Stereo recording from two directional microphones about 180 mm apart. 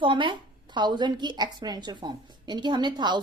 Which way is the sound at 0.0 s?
25° right (ahead or behind).